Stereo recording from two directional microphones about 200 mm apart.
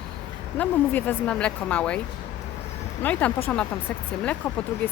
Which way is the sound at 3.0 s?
5° left (ahead or behind).